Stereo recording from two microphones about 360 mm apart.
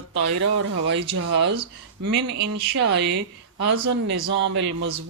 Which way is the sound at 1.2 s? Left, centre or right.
Right.